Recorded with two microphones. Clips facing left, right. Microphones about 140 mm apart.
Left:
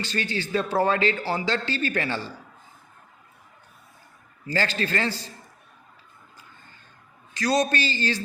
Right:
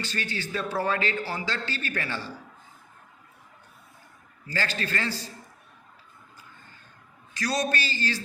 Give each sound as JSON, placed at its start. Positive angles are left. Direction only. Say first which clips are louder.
{"t": 0.0, "sound": "a man's voice", "louder": "left 4 dB", "side_deg": 25}
{"t": 4.5, "sound": "a man's voice", "louder": "left 4 dB", "side_deg": 30}
{"t": 7.3, "sound": "a man's voice", "louder": "left 5 dB", "side_deg": 25}